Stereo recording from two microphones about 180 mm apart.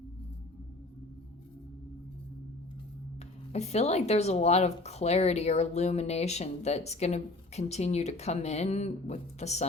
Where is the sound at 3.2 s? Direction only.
35° left (ahead or behind).